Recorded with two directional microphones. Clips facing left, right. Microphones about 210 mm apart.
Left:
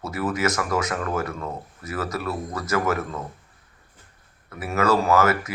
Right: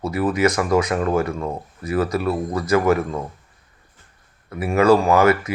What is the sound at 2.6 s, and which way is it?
Speech, 15° right (ahead or behind).